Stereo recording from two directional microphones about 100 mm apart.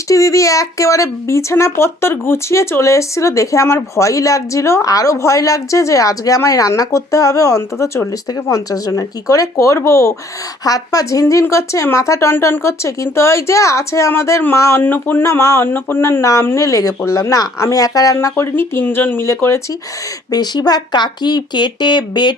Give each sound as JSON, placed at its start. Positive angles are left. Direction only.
{"t": 0.1, "sound": "speech", "side_deg": 30}
{"t": 20.3, "sound": "speech", "side_deg": 45}